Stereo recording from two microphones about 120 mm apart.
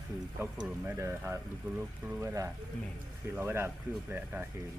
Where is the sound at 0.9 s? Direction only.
20° right (ahead or behind).